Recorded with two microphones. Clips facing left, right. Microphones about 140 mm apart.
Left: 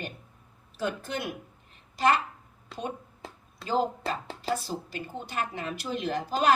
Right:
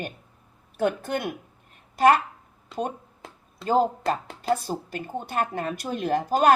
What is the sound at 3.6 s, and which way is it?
Speech, 45° right (ahead or behind).